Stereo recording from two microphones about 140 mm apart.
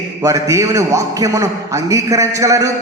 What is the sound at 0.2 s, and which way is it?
A man's voice, 25° right (ahead or behind).